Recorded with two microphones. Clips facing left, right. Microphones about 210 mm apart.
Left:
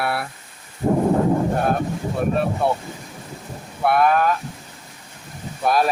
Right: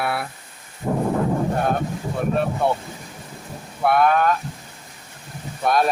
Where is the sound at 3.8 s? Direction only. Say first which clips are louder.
Even; centre (ahead or behind).